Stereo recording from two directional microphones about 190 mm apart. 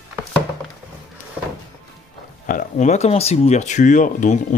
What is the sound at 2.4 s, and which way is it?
Speech, 40° left (ahead or behind).